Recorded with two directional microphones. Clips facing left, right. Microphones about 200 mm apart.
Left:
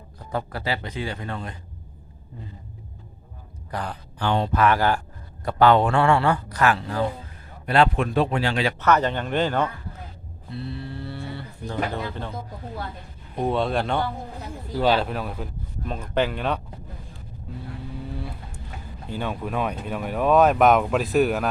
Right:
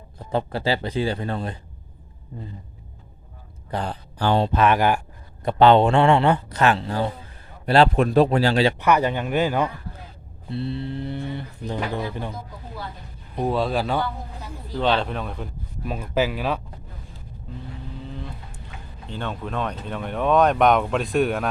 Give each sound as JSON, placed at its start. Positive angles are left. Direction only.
{"t": 0.3, "sound": "speech", "side_deg": -25}
{"t": 3.7, "sound": "speech", "side_deg": -30}
{"t": 8.8, "sound": "speech", "side_deg": -10}
{"t": 10.5, "sound": "speech", "side_deg": -25}
{"t": 13.3, "sound": "speech", "side_deg": 0}
{"t": 15.8, "sound": "speech", "side_deg": -5}
{"t": 18.1, "sound": "vehicle", "side_deg": 10}
{"t": 19.0, "sound": "speech", "side_deg": 10}